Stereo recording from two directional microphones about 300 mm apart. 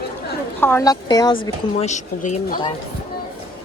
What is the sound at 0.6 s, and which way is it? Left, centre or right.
A woman's voice, centre.